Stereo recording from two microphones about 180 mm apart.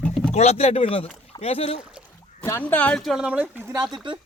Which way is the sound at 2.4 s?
10° left (ahead or behind).